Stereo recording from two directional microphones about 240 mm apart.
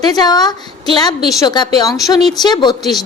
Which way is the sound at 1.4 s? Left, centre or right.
Centre.